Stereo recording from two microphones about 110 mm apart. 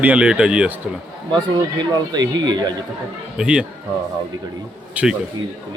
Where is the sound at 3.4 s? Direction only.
10° right (ahead or behind).